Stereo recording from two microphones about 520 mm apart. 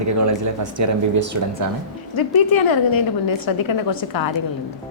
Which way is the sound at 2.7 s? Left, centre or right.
Left.